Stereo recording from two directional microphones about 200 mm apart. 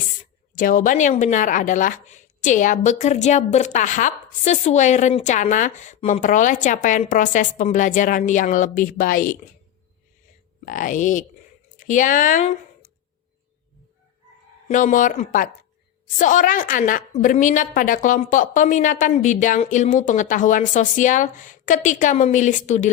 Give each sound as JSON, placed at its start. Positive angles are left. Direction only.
{"t": 0.5, "sound": "a woman's voice", "side_deg": 40}
{"t": 10.7, "sound": "a woman's voice", "side_deg": 40}
{"t": 14.7, "sound": "a woman's voice", "side_deg": 40}